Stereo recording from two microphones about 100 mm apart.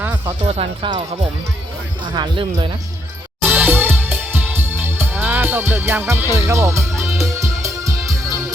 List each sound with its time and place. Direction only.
0.0 s music: 20° right (ahead or behind)
0.4 s speech: 85° right
2.0 s speech: 50° right (ahead or behind)
3.4 s music: 15° right (ahead or behind); by 7.9 s 30° right (ahead or behind)